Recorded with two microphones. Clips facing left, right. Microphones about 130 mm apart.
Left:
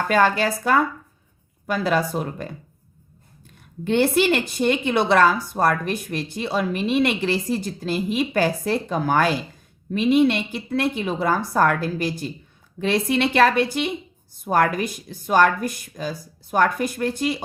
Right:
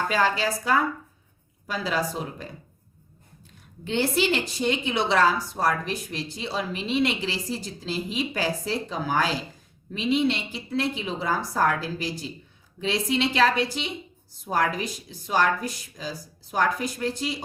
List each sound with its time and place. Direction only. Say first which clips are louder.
0.1 s a woman's voice: left 8 dB; 55° left (ahead or behind)
3.8 s a woman's voice: left 6 dB; 55° left (ahead or behind)